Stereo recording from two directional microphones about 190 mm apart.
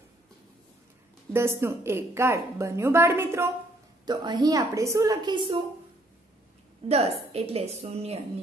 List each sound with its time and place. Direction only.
1.3 s a woman's voice: 15° right (ahead or behind)
6.9 s a woman's voice: 30° right (ahead or behind)